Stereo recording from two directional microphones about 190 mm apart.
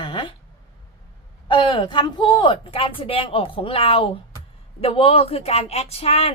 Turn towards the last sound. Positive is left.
turn(degrees=35)  # may be behind; listen again after turning